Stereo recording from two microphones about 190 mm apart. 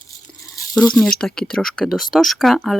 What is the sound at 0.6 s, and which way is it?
Rattle, 15° left (ahead or behind).